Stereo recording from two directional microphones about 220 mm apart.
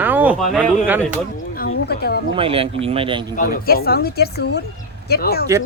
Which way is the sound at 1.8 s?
45° left (ahead or behind).